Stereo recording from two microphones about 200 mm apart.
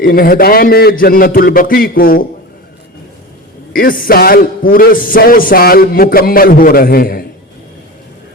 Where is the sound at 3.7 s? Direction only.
45° left (ahead or behind).